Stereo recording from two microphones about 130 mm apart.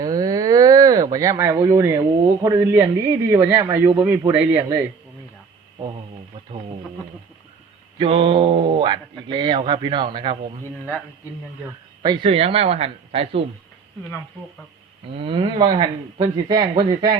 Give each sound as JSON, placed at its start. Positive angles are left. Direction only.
{"t": 0.0, "sound": "a sound", "side_deg": -30}
{"t": 2.4, "sound": "a man's voice", "side_deg": -20}
{"t": 7.9, "sound": "speech", "side_deg": -45}
{"t": 10.6, "sound": "a man's voice", "side_deg": 15}
{"t": 12.0, "sound": "speech", "side_deg": -40}
{"t": 15.1, "sound": "speech", "side_deg": -45}